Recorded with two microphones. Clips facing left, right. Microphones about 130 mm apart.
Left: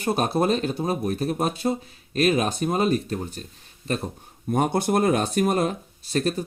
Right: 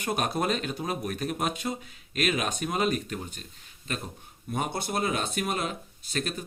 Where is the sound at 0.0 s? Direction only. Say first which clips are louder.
Left 6 dB; 30° left (ahead or behind).